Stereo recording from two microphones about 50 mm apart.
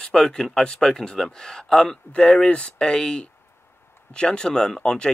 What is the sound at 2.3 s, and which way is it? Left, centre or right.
Speech, left.